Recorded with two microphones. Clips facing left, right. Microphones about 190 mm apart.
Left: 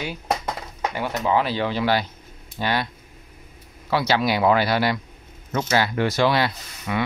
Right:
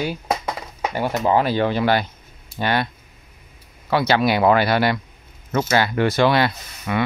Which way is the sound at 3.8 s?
55° right (ahead or behind).